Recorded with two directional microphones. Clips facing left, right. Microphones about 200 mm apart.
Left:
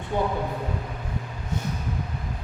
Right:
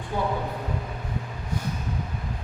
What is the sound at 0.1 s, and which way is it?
Speech, 20° left (ahead or behind).